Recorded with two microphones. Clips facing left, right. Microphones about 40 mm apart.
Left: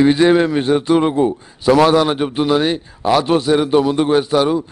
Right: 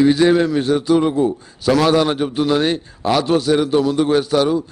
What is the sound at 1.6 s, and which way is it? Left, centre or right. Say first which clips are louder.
Speech: left 3 dB; centre.